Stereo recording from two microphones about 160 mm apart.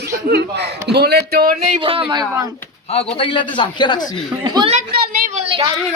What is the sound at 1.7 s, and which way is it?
Speech, 35° right (ahead or behind).